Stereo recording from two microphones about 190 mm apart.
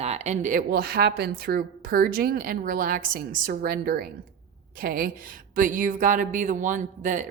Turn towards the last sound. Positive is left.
turn(degrees=-40)  # may be behind; listen again after turning